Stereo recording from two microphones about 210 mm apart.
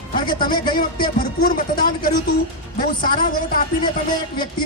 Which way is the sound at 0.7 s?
45° left (ahead or behind).